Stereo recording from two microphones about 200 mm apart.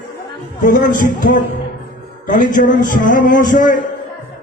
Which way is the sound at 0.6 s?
40° left (ahead or behind).